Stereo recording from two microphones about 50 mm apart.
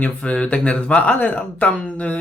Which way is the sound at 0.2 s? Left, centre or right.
Left.